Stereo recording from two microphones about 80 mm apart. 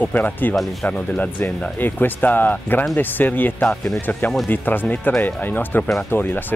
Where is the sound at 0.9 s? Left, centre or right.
Centre.